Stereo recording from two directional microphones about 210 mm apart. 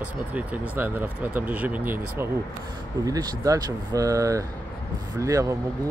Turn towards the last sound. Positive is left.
turn(degrees=-15)  # may be behind; listen again after turning